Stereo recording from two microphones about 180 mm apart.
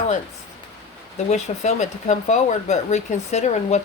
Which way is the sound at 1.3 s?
40° left (ahead or behind).